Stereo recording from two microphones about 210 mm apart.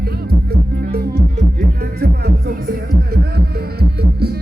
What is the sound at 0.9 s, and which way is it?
Music, 45° right (ahead or behind).